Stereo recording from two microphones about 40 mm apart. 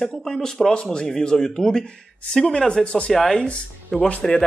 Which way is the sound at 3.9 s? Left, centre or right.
Centre.